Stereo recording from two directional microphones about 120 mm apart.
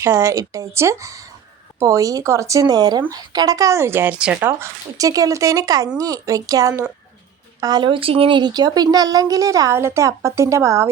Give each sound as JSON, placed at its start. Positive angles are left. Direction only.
{"t": 0.0, "sound": "speech", "side_deg": -20}